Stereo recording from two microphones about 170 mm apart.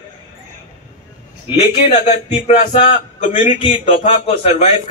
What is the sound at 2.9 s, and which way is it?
Speech, 45° left (ahead or behind).